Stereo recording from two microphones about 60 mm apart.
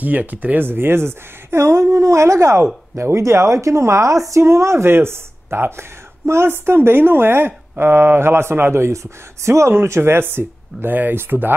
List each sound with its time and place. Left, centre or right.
0.0 s speech: right